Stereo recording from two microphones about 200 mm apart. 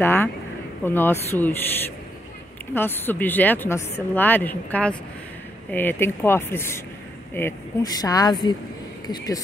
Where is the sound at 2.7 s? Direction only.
10° left (ahead or behind).